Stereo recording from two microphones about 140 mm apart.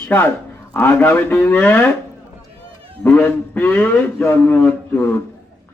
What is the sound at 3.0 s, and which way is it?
A man's voice, 10° left (ahead or behind).